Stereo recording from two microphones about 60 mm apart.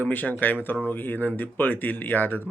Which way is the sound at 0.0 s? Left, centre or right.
Left.